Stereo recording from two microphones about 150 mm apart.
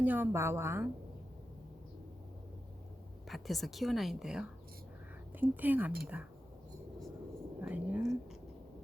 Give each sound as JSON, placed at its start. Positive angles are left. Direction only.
{"t": 0.0, "sound": "a woman's voice", "side_deg": -10}
{"t": 3.2, "sound": "a woman's voice", "side_deg": 0}
{"t": 7.6, "sound": "whispering", "side_deg": -10}